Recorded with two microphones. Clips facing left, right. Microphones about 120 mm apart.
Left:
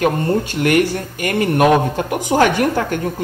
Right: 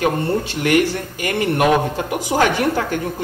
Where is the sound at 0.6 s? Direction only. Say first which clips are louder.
Even; 40° left (ahead or behind).